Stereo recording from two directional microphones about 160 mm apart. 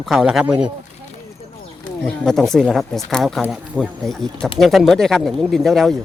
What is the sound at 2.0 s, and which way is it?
Speech, centre (ahead or behind).